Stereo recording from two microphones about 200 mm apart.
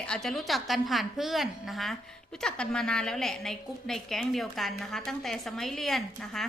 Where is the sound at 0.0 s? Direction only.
5° left (ahead or behind).